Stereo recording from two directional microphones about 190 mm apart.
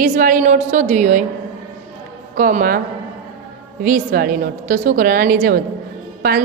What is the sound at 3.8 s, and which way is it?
A woman's voice, 50° right (ahead or behind).